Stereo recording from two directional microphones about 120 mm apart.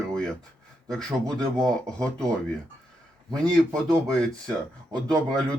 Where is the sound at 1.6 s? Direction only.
5° left (ahead or behind).